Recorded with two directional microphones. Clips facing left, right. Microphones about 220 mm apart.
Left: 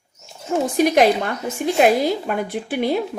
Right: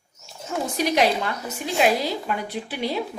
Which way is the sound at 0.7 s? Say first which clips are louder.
Left 6 dB; 50° left (ahead or behind).